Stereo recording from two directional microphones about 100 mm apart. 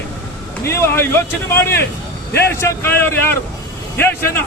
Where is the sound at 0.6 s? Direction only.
25° left (ahead or behind).